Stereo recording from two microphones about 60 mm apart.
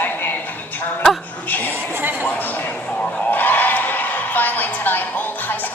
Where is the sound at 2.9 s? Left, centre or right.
Left.